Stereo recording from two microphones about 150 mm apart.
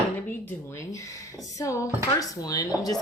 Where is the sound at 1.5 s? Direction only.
20° left (ahead or behind).